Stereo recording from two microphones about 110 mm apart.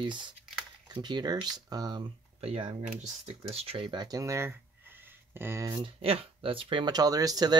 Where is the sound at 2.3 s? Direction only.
60° right (ahead or behind); by 5.7 s 25° right (ahead or behind).